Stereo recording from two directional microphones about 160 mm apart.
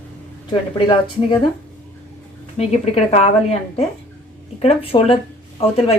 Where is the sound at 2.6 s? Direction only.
40° left (ahead or behind).